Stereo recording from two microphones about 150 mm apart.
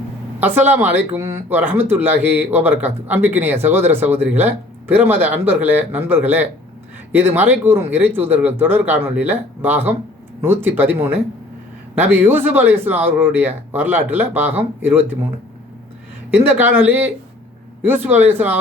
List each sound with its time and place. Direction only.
0.3 s speech: 15° right (ahead or behind)
16.5 s speech: 10° right (ahead or behind)